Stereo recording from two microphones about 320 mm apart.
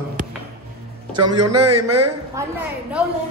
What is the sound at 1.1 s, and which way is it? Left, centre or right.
Speech, centre.